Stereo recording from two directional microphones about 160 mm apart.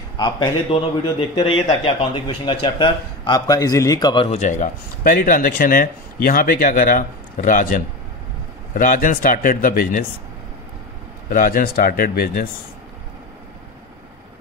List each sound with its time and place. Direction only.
0.2 s a man's voice: 30° left (ahead or behind)
4.4 s speech: 50° left (ahead or behind)
11.2 s speech: 60° left (ahead or behind)